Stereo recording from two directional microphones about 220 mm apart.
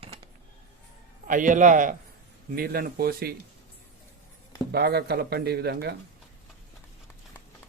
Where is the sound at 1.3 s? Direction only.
35° right (ahead or behind).